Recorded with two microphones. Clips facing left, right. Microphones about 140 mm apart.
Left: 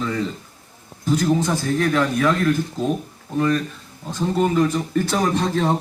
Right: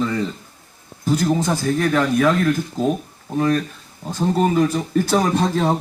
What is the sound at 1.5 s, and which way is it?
Speech, 40° right (ahead or behind).